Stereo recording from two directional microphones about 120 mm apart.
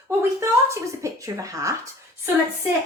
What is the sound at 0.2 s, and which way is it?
Speech, 20° right (ahead or behind).